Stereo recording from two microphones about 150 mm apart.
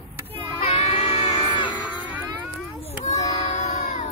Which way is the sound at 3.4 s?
50° left (ahead or behind).